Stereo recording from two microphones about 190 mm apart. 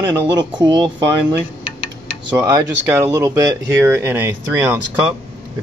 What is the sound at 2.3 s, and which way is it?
Speech, 15° right (ahead or behind).